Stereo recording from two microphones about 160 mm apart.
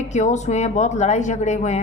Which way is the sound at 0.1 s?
45° left (ahead or behind).